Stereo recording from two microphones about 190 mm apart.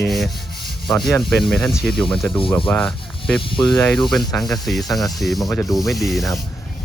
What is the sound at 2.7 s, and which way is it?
Speech, 5° left (ahead or behind).